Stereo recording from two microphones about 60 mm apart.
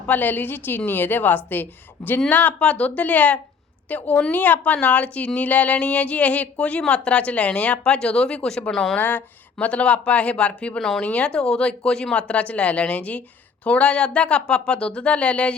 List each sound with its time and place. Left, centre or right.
0.1 s a woman's voice: left
2.0 s speech: centre
2.3 s a woman's voice: left; by 9.0 s centre
9.0 s a woman's voice: left
10.8 s speech: centre
11.0 s a woman's voice: centre